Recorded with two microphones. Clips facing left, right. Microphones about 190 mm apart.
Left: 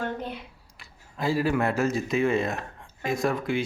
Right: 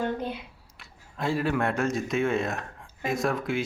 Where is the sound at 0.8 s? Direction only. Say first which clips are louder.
Left 1 dB; centre (ahead or behind).